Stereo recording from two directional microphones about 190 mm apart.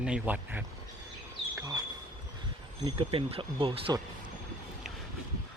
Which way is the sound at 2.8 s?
30° right (ahead or behind).